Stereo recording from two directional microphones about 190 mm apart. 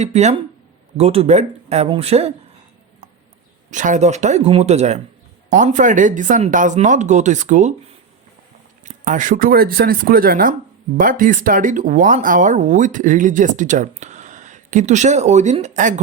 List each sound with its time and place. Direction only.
0.0 s speech: 35° right (ahead or behind)
3.7 s speech: 40° right (ahead or behind)
8.8 s speech: 40° right (ahead or behind)